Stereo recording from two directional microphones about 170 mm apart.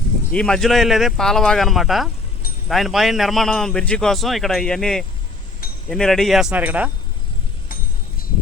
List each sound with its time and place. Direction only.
0.3 s a man's voice: 5° left (ahead or behind)